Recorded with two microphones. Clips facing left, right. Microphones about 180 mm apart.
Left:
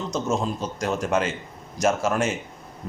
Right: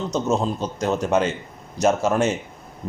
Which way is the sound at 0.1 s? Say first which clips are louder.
Right 3 dB; 35° right (ahead or behind).